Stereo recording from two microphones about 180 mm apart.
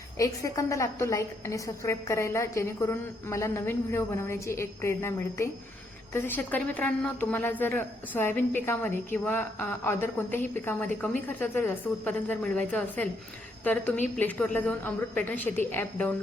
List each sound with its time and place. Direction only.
0.2 s a woman's voice: 20° left (ahead or behind)